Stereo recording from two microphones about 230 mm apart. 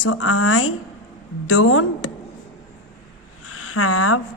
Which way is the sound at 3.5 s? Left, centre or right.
Left.